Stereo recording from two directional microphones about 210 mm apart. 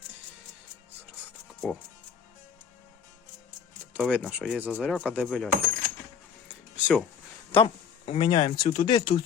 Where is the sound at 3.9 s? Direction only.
5° right (ahead or behind).